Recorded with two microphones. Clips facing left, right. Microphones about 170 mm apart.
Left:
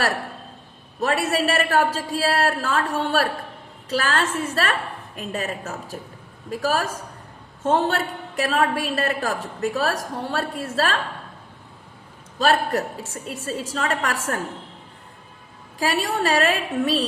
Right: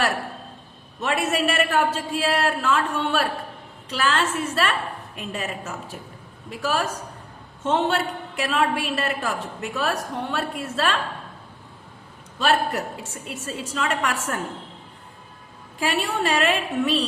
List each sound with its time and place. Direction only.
1.0 s a woman's voice: 40° left (ahead or behind)
12.4 s a woman's voice: 40° left (ahead or behind)
15.8 s a woman's voice: 40° left (ahead or behind)